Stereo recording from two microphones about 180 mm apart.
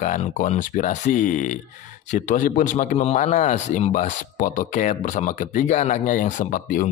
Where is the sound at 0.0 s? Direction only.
45° left (ahead or behind).